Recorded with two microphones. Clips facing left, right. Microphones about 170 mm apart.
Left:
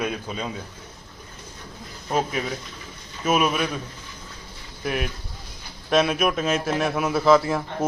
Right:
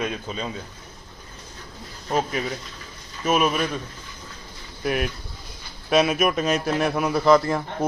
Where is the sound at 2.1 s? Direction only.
5° left (ahead or behind).